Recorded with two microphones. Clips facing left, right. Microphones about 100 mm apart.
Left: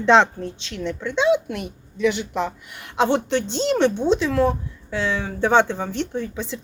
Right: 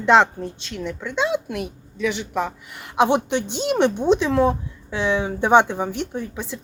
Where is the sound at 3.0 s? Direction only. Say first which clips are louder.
Right 1 dB; 15° right (ahead or behind).